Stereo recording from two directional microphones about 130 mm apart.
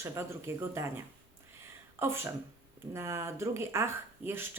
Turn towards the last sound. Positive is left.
turn(degrees=-15)  # may be behind; listen again after turning